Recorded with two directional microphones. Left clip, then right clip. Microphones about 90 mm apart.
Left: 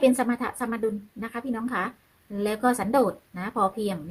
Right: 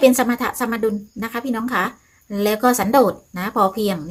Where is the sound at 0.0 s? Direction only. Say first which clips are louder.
Right 7 dB; centre (ahead or behind).